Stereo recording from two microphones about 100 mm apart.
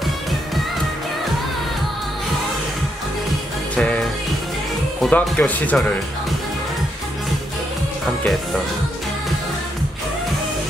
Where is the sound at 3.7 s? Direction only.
10° left (ahead or behind).